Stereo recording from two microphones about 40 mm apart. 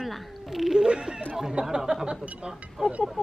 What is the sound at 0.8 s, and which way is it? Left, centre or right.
Speech, centre.